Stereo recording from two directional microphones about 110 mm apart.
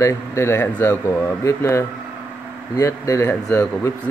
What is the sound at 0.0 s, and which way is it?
Speech, 25° left (ahead or behind).